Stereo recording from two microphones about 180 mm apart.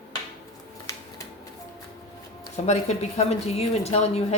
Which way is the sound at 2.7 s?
40° left (ahead or behind).